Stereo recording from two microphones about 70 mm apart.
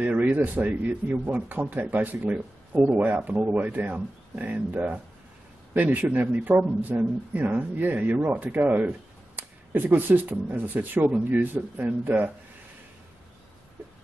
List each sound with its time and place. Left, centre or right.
0.0 s speech: right